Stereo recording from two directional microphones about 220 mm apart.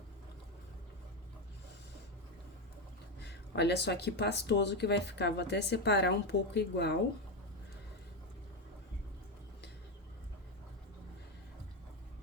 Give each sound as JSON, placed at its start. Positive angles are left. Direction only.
{"t": 3.2, "sound": "speech", "side_deg": 50}